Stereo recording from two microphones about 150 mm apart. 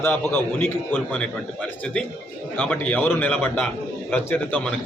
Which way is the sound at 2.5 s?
10° left (ahead or behind).